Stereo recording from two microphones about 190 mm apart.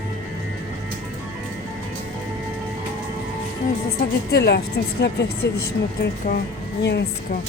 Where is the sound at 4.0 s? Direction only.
55° left (ahead or behind).